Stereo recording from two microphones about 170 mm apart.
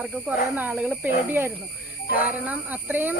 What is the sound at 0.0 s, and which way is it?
Speech, 5° right (ahead or behind).